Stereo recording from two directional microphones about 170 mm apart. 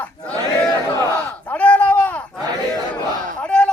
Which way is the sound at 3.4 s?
5° left (ahead or behind).